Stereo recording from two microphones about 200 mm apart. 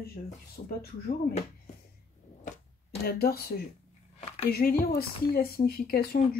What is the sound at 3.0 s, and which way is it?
Speech, 50° left (ahead or behind).